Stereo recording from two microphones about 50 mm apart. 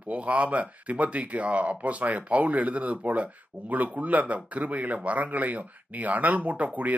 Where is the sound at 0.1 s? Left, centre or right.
Right.